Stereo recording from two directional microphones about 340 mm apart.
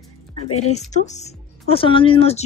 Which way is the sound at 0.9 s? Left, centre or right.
Left.